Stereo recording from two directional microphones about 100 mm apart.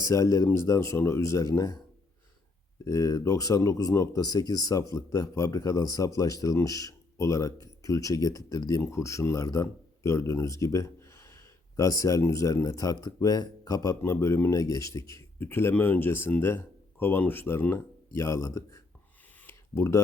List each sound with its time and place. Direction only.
0.0 s speech: 35° left (ahead or behind)
2.8 s speech: 30° left (ahead or behind)
14.0 s speech: 30° left (ahead or behind)
18.2 s speech: 30° left (ahead or behind)
19.5 s a sound: 25° left (ahead or behind)